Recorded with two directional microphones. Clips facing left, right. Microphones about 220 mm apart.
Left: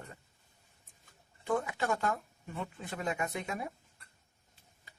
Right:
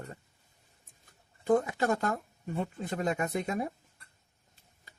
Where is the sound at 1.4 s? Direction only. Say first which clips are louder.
Right 6 dB; 40° right (ahead or behind).